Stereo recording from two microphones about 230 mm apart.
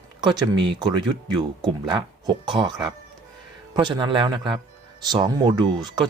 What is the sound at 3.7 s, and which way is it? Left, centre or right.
Speech, centre.